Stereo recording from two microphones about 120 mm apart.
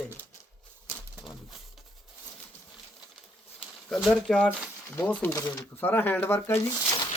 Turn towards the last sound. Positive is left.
turn(degrees=35)  # may be behind; listen again after turning